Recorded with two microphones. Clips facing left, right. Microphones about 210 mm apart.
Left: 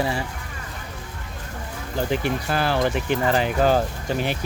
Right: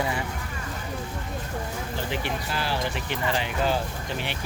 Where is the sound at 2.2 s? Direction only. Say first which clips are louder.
Left 6 dB; 55° left (ahead or behind).